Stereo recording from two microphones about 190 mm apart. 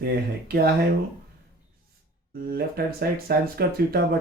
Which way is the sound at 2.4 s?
50° right (ahead or behind).